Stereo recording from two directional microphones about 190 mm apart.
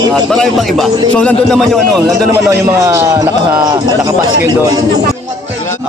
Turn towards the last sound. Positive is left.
turn(degrees=-20)  # may be behind; listen again after turning